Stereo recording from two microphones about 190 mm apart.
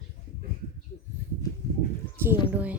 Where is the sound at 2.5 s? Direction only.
10° right (ahead or behind).